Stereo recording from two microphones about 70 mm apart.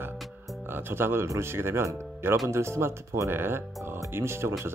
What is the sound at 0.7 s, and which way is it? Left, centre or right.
Speech, right.